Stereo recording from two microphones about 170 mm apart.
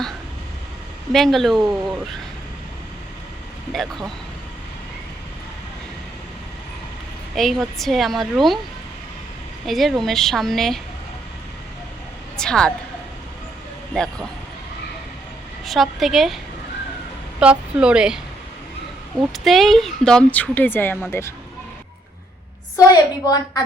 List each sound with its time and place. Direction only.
1.1 s a woman's voice: centre (ahead or behind)
3.7 s a woman's voice: centre (ahead or behind)
7.3 s a woman's voice: centre (ahead or behind)
9.6 s a woman's voice: centre (ahead or behind)
12.4 s a woman's voice: 5° left (ahead or behind)
13.9 s a man's voice: 5° left (ahead or behind)
15.6 s a woman's voice: centre (ahead or behind)
17.4 s a woman's voice: 5° right (ahead or behind)
19.3 s speech: centre (ahead or behind)
22.9 s a woman's voice: 20° left (ahead or behind)